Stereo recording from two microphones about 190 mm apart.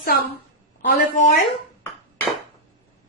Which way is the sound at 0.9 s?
45° left (ahead or behind).